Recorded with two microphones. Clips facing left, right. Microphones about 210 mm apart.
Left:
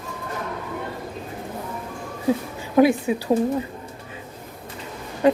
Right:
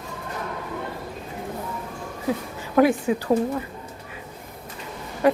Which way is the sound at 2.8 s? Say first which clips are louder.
Left 2 dB; 20° left (ahead or behind).